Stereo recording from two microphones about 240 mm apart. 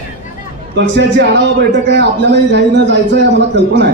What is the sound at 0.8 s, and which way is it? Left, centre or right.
Speech, right.